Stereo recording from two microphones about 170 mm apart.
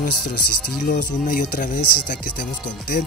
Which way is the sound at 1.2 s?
55° left (ahead or behind).